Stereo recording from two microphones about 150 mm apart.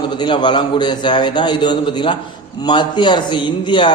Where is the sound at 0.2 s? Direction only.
30° left (ahead or behind).